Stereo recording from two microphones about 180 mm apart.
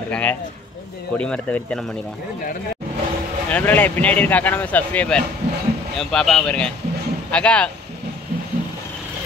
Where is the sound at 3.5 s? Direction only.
10° left (ahead or behind).